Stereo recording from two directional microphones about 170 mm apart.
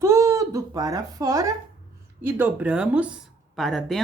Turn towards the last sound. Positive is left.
turn(degrees=0)  # may be behind; listen again after turning